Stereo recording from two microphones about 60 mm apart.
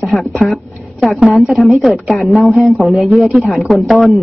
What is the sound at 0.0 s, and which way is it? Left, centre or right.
A man's voice, centre.